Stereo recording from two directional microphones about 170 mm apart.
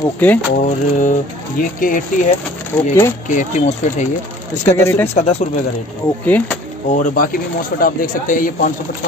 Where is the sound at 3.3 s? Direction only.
50° left (ahead or behind).